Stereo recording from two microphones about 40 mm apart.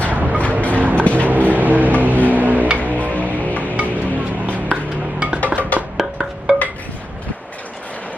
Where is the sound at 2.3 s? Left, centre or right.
Right.